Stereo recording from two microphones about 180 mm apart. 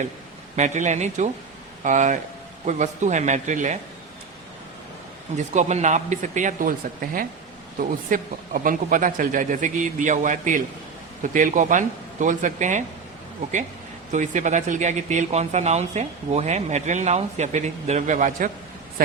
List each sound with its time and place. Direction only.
0.5 s speech: 40° right (ahead or behind)
5.5 s speech: 40° right (ahead or behind)
14.1 s speech: 45° right (ahead or behind)